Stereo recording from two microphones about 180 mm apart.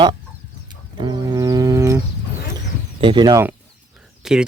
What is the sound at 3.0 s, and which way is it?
Speech, 25° right (ahead or behind).